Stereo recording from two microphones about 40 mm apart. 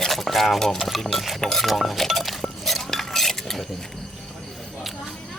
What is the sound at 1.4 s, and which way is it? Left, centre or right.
Chink, centre.